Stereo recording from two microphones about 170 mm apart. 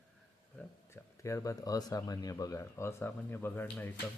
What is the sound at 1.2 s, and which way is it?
Speech, 20° left (ahead or behind).